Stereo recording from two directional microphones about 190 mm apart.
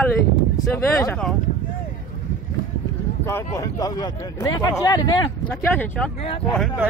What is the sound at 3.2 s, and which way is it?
Speech, 15° left (ahead or behind).